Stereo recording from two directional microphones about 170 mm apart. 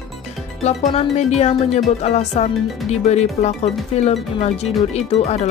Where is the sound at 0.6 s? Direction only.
40° left (ahead or behind).